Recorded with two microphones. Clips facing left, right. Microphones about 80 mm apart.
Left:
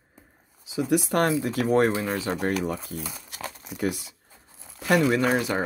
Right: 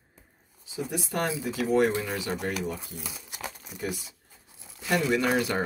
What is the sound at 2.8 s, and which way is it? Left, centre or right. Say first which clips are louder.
Crumpling: left 5 dB; centre.